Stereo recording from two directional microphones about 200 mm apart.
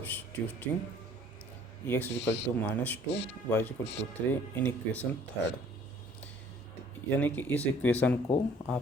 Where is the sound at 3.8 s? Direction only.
60° left (ahead or behind).